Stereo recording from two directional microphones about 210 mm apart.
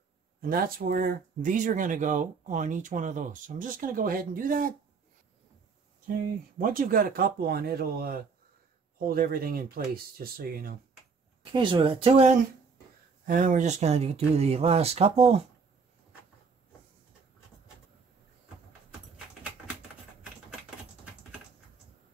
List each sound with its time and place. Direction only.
0.4 s speech: 45° right (ahead or behind)
6.6 s speech: 40° right (ahead or behind)
11.5 s speech: 25° right (ahead or behind)
13.2 s speech: 40° right (ahead or behind)
19.1 s a sound: 5° right (ahead or behind)